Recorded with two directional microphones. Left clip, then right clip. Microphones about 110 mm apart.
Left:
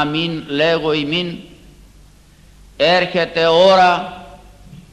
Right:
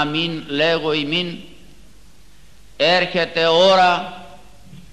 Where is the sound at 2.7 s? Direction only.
35° left (ahead or behind).